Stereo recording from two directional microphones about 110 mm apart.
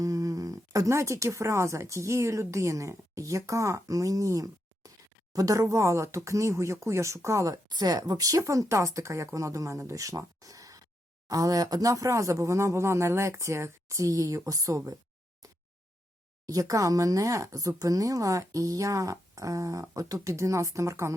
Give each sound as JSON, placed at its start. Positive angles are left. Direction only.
{"t": 0.0, "sound": "a woman's voice", "side_deg": -30}
{"t": 16.5, "sound": "speech", "side_deg": -30}